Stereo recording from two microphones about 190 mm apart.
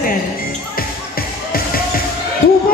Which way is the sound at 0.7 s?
50° left (ahead or behind).